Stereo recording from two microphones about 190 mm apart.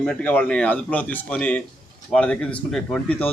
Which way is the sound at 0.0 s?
5° left (ahead or behind).